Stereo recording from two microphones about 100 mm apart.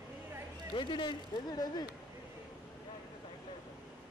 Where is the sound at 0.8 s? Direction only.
55° left (ahead or behind).